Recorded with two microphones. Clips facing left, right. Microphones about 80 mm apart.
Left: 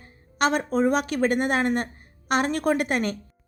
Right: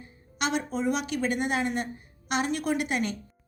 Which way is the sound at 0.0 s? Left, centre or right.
Left.